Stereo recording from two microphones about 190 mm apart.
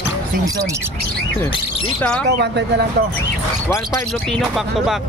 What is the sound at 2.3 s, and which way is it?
Speech, 60° right (ahead or behind).